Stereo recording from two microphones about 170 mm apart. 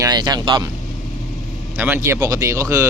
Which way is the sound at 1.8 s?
10° right (ahead or behind).